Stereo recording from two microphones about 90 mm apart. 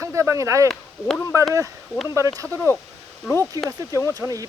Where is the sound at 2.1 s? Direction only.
35° right (ahead or behind).